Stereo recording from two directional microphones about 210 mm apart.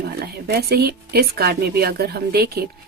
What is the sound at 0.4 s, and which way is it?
A woman's voice, 50° right (ahead or behind).